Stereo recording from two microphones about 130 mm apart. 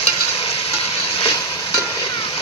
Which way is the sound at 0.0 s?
50° left (ahead or behind).